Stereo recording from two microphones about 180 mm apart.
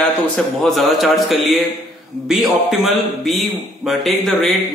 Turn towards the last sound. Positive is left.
turn(degrees=0)  # may be behind; listen again after turning